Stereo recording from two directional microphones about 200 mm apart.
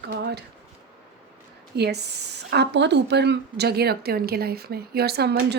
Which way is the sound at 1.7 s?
55° right (ahead or behind).